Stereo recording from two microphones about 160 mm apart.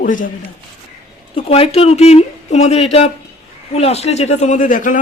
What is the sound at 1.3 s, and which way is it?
Speech, 40° left (ahead or behind).